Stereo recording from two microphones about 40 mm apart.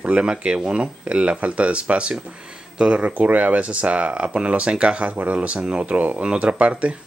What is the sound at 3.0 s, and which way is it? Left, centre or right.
Speech, right.